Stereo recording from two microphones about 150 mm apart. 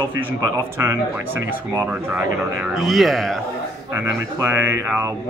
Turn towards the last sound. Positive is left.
turn(degrees=-15)  # may be behind; listen again after turning